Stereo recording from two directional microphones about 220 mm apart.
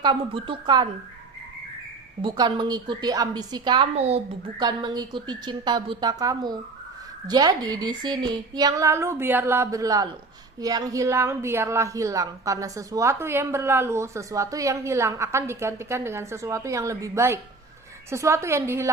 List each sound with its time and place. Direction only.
0.0 s a woman's voice: 20° right (ahead or behind)
2.2 s a woman's voice: 20° right (ahead or behind)